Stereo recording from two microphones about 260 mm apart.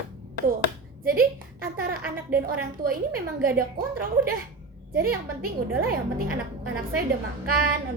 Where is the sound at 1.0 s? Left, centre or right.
Right.